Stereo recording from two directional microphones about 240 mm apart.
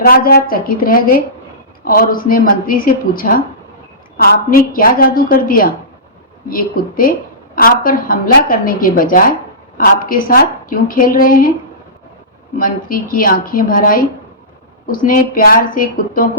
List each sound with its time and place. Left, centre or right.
0.0 s a woman's voice: left
12.5 s a woman's voice: left